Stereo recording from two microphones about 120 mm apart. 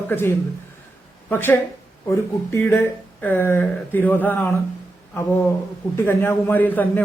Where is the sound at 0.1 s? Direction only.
20° left (ahead or behind).